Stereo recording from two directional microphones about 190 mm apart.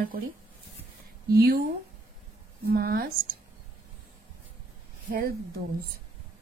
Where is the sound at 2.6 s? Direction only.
50° right (ahead or behind).